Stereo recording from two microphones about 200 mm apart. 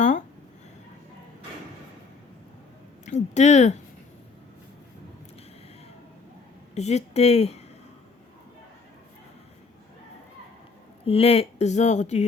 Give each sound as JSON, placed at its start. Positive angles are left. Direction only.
{"t": 3.1, "sound": "speech", "side_deg": 35}
{"t": 6.7, "sound": "speech", "side_deg": 35}
{"t": 11.0, "sound": "speech", "side_deg": 30}